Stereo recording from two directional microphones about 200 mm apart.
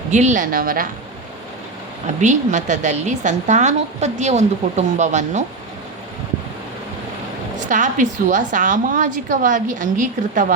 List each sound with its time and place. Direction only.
0.1 s a woman's voice: 35° right (ahead or behind)
2.2 s a woman's voice: 35° right (ahead or behind)
7.7 s a woman's voice: 40° right (ahead or behind)